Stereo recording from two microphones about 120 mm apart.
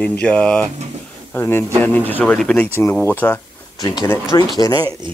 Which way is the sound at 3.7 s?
30° left (ahead or behind).